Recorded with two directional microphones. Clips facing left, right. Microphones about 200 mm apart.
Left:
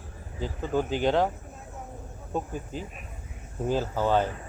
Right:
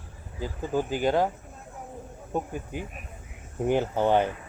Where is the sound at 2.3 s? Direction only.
15° right (ahead or behind).